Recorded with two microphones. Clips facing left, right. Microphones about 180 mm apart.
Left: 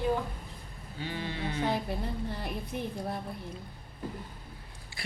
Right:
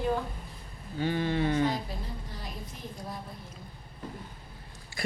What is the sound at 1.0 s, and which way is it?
Sheep, 50° right (ahead or behind).